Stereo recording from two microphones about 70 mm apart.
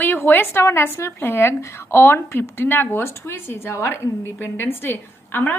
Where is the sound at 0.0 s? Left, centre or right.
Left.